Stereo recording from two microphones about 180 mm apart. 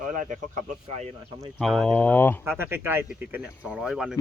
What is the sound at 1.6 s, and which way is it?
Speech, 5° left (ahead or behind).